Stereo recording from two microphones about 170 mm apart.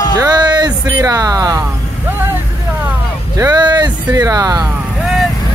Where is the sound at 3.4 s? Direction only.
25° right (ahead or behind).